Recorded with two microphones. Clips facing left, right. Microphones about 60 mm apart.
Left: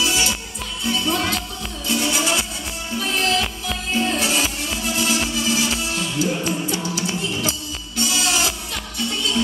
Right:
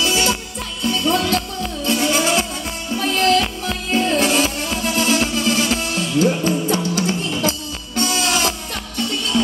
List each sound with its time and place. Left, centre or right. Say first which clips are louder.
0.0 s music: right 3 dB; right